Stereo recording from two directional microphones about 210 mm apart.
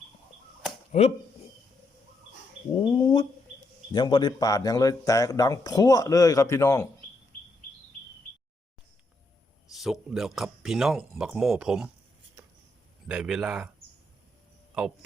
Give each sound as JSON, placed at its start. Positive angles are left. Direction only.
{"t": 0.9, "sound": "speech", "side_deg": 30}
{"t": 2.7, "sound": "speech", "side_deg": 20}
{"t": 9.7, "sound": "speech", "side_deg": 0}
{"t": 13.1, "sound": "speech", "side_deg": -5}